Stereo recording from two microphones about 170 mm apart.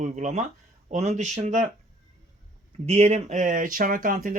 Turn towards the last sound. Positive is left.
turn(degrees=-55)  # may be behind; listen again after turning